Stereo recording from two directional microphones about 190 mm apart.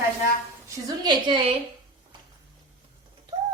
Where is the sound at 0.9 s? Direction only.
25° right (ahead or behind).